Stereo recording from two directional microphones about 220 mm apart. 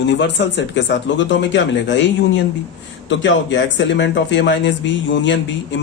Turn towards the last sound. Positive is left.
turn(degrees=55)  # may be behind; listen again after turning